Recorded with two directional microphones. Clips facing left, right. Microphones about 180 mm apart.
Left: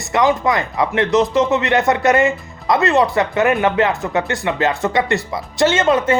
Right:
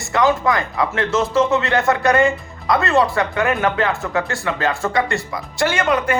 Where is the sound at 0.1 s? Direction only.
20° left (ahead or behind).